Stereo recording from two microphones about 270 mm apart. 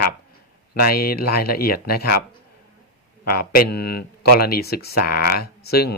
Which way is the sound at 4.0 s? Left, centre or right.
Left.